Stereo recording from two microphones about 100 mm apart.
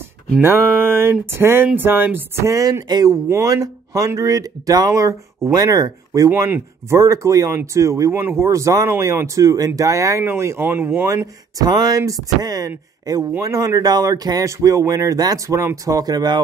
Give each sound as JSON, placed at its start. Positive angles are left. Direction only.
{"t": 0.4, "sound": "speech", "side_deg": -25}
{"t": 2.5, "sound": "speech", "side_deg": -35}
{"t": 11.1, "sound": "speech", "side_deg": -35}